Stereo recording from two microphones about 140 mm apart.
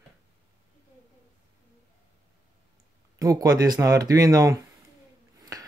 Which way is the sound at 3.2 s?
25° right (ahead or behind).